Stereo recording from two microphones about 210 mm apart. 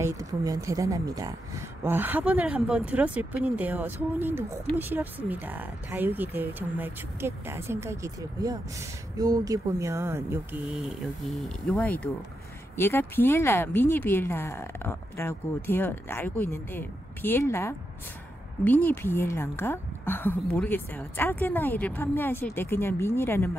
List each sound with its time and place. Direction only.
0.0 s speech: 15° right (ahead or behind); by 23.5 s 10° left (ahead or behind)